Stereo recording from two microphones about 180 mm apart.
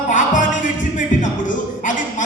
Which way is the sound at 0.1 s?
45° left (ahead or behind).